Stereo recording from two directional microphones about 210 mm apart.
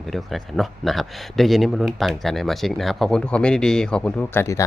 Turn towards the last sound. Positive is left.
turn(degrees=10)  # may be behind; listen again after turning